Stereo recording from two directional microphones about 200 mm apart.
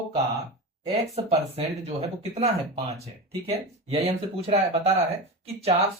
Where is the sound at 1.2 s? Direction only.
30° right (ahead or behind).